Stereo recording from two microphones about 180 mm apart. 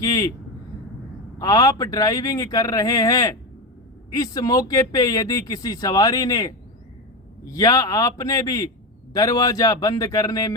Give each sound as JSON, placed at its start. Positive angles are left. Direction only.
{"t": 0.0, "sound": "speech", "side_deg": 20}
{"t": 1.4, "sound": "speech", "side_deg": 20}